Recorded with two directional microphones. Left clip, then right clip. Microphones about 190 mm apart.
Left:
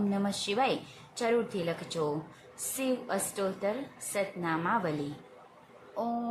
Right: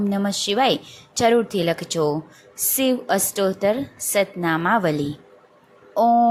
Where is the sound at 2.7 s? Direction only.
30° right (ahead or behind).